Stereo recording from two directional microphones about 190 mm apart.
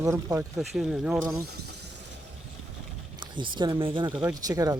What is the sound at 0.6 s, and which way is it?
Speech, centre (ahead or behind).